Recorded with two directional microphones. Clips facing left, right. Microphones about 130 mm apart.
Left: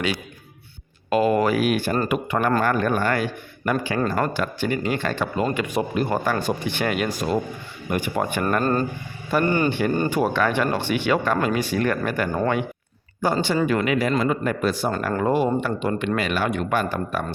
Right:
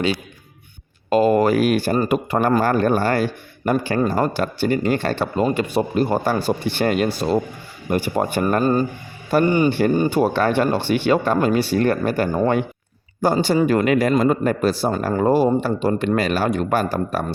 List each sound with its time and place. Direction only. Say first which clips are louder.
1.1 s speech: right 4 dB; 35° right (ahead or behind)
8.6 s a man's voice: right 4 dB; 10° right (ahead or behind)
10.1 s speech: right 3 dB; 35° right (ahead or behind)